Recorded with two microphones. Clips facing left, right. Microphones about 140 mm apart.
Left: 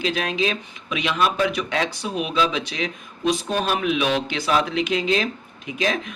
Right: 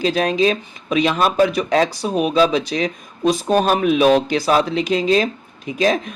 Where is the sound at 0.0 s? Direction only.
40° right (ahead or behind).